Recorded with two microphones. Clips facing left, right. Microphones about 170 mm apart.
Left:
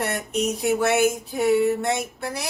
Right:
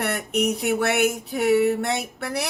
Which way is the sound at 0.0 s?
65° right (ahead or behind).